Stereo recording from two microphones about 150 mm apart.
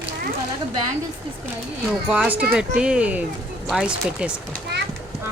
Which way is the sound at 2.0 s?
10° right (ahead or behind).